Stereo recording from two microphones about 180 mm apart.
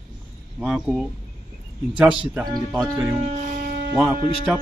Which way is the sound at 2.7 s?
15° right (ahead or behind).